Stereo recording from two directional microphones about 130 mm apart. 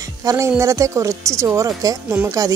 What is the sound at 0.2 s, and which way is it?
Speech, 25° right (ahead or behind).